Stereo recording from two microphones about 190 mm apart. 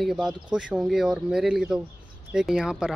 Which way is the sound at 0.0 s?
Centre (ahead or behind).